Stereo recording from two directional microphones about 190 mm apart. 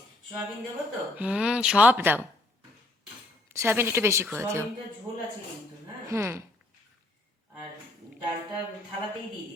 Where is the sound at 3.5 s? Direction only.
15° right (ahead or behind).